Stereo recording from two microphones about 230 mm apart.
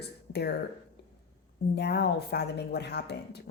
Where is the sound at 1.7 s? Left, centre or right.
Left.